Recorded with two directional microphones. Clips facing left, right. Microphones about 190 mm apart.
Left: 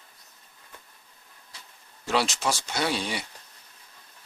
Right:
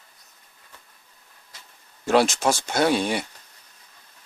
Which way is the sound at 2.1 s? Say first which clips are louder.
Right 7 dB; 50° right (ahead or behind).